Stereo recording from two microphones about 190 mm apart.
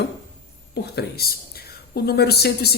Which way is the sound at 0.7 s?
55° left (ahead or behind).